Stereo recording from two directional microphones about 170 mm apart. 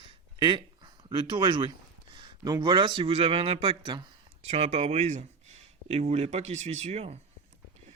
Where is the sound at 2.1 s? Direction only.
25° right (ahead or behind).